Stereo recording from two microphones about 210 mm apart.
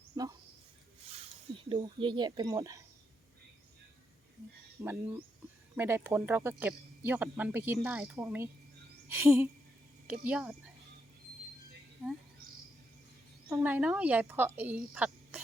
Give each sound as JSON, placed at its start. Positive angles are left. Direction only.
{"t": 1.7, "sound": "speech", "side_deg": -25}
{"t": 4.8, "sound": "speech", "side_deg": -10}
{"t": 9.0, "sound": "a sound", "side_deg": -10}
{"t": 10.2, "sound": "speech", "side_deg": -5}
{"t": 13.5, "sound": "speech", "side_deg": -10}